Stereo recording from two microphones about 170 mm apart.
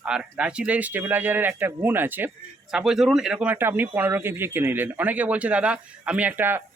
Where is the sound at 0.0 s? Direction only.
5° right (ahead or behind).